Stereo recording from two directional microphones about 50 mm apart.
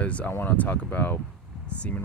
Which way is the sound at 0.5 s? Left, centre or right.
Left.